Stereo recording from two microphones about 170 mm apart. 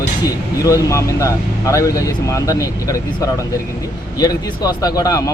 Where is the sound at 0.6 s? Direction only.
20° left (ahead or behind).